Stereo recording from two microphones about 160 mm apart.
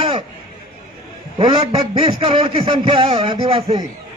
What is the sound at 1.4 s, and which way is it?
A man's voice, 30° right (ahead or behind).